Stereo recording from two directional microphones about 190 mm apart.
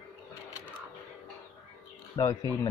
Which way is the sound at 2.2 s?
20° left (ahead or behind).